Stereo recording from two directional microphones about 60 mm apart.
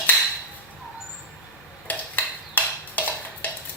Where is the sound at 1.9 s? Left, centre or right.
Left.